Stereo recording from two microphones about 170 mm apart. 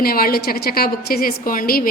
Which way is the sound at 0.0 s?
60° left (ahead or behind).